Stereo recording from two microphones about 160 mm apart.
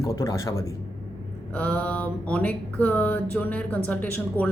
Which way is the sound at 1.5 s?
10° left (ahead or behind).